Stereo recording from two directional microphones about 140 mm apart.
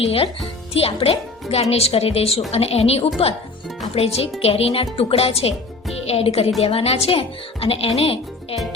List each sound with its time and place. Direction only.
0.0 s a woman's voice: 45° left (ahead or behind)